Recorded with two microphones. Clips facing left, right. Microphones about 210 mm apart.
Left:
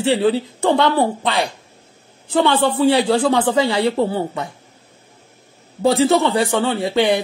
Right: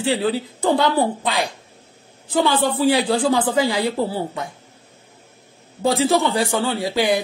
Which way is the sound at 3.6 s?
30° left (ahead or behind).